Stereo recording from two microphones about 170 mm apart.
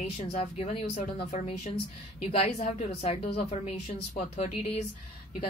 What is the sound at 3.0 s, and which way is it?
A woman's voice, 35° left (ahead or behind).